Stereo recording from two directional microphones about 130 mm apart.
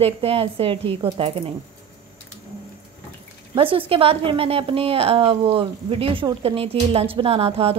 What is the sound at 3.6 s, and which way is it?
A woman's voice, 45° right (ahead or behind).